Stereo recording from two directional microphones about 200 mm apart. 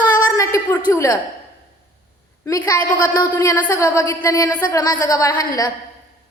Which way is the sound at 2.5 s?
15° left (ahead or behind).